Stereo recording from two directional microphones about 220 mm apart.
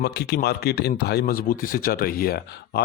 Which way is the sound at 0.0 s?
45° left (ahead or behind).